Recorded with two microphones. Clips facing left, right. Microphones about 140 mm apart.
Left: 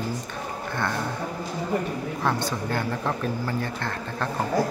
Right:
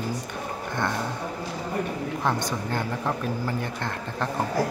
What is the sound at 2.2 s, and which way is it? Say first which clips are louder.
Speech: left 1 dB; 15° right (ahead or behind).